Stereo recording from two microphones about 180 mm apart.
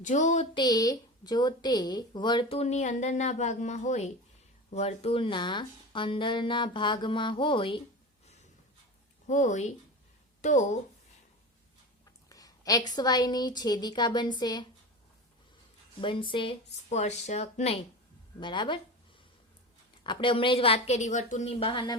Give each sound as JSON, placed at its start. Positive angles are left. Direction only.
{"t": 0.0, "sound": "a sound", "side_deg": 45}
{"t": 0.5, "sound": "speech", "side_deg": 20}
{"t": 9.2, "sound": "a woman's voice", "side_deg": 40}
{"t": 12.3, "sound": "speech", "side_deg": 20}
{"t": 16.0, "sound": "a woman's voice", "side_deg": 30}
{"t": 18.3, "sound": "speech", "side_deg": 25}
{"t": 20.1, "sound": "a woman's voice", "side_deg": 30}